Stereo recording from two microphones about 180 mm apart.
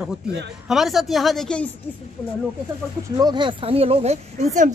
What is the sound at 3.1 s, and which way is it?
Speech, 25° right (ahead or behind).